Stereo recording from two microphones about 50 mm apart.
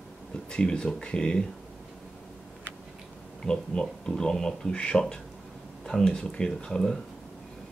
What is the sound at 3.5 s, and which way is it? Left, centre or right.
Speech, centre.